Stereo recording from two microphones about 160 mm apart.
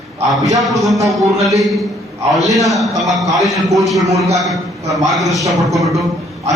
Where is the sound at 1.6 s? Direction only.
Centre (ahead or behind).